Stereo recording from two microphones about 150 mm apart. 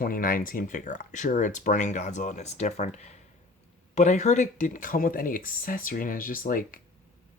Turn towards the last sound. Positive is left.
turn(degrees=70)  # may be behind; listen again after turning